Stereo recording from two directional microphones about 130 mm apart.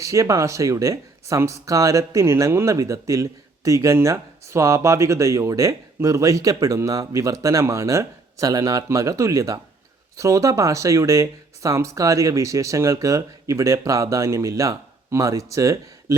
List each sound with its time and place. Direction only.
0.0 s speech: 25° right (ahead or behind)